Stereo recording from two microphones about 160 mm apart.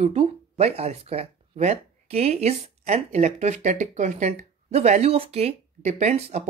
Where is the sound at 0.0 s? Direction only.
40° right (ahead or behind).